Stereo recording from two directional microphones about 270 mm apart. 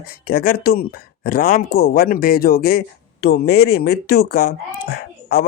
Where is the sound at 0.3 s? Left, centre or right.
Left.